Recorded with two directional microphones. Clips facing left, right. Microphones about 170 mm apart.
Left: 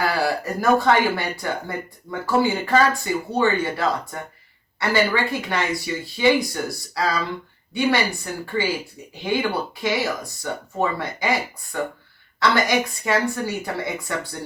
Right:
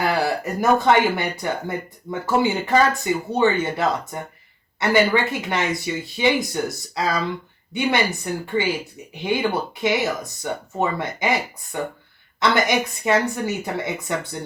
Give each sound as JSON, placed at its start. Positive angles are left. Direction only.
{"t": 0.0, "sound": "speech", "side_deg": -20}